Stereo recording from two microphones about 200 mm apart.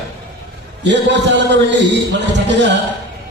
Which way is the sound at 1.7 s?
60° right (ahead or behind).